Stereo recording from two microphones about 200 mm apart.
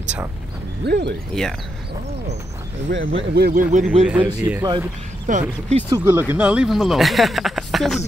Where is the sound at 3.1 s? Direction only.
55° right (ahead or behind).